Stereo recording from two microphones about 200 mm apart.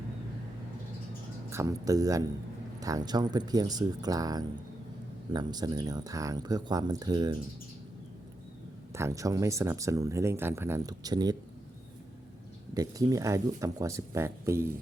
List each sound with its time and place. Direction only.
1.5 s speech: 15° right (ahead or behind)
8.9 s speech: 15° right (ahead or behind)
12.7 s speech: 15° right (ahead or behind)